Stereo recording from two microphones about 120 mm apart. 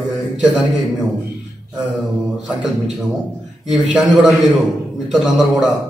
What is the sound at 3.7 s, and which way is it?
A man's voice, 5° right (ahead or behind).